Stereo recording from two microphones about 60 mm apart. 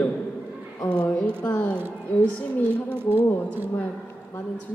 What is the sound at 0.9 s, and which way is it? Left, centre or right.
Speech, centre.